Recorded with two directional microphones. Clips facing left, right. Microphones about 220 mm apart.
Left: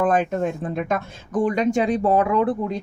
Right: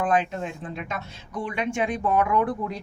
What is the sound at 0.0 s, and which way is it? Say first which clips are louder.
Speech: left 5 dB; 50° left (ahead or behind).